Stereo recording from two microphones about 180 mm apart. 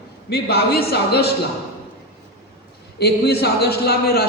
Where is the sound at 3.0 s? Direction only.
65° left (ahead or behind).